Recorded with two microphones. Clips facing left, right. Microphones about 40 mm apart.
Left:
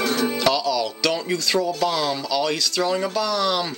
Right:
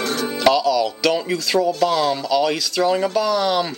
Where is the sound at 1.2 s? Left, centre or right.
Centre.